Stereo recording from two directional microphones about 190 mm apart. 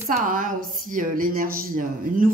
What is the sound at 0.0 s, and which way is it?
Speech, 45° right (ahead or behind).